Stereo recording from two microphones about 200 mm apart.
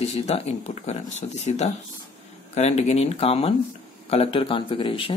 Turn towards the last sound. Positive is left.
turn(degrees=25)  # may be behind; listen again after turning